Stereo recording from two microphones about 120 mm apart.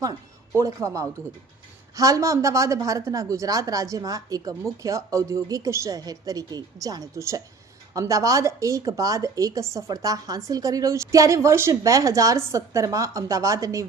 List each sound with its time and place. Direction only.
0.5 s speech: 25° right (ahead or behind)